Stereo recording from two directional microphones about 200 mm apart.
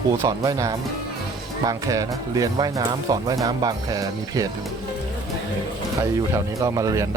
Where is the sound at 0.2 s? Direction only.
15° right (ahead or behind).